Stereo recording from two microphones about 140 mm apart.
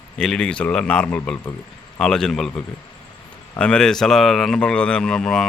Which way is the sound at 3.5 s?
5° left (ahead or behind).